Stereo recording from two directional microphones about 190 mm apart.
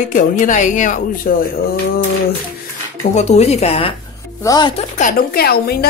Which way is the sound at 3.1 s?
35° left (ahead or behind).